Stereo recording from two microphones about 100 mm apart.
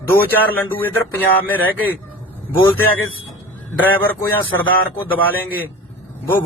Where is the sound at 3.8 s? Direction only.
20° left (ahead or behind).